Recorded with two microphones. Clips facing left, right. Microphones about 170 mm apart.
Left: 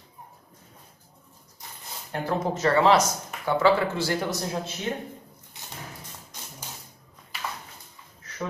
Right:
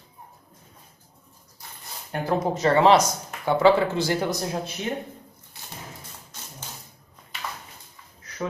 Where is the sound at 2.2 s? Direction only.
15° right (ahead or behind).